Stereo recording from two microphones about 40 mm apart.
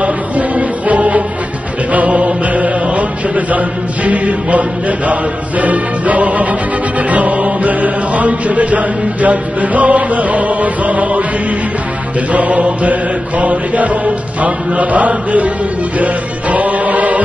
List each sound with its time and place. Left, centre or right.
0.0 s music: right
7.1 s chant: right
12.3 s chant: right
16.0 s music: right